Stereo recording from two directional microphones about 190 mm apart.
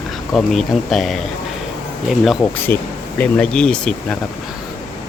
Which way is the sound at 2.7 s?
10° left (ahead or behind).